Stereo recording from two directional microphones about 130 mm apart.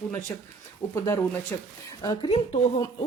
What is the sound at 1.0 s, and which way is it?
Speech, 20° left (ahead or behind).